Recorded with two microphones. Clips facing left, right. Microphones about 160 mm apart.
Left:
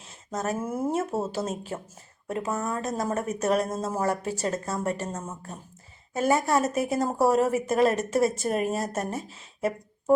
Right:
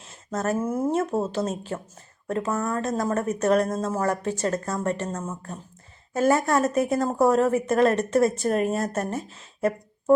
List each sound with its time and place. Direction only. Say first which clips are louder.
0.3 s a woman's voice: right 4 dB; centre (ahead or behind); by 2.8 s 15° left (ahead or behind)
2.8 s a woman's voice: right 3 dB; 5° left (ahead or behind)
6.1 s a woman's voice: right 2 dB; centre (ahead or behind)